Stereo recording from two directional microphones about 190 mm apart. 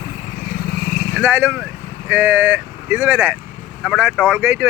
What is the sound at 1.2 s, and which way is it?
Speech, 10° right (ahead or behind).